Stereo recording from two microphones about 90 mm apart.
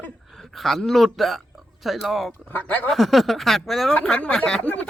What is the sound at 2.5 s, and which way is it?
Speech, 20° left (ahead or behind).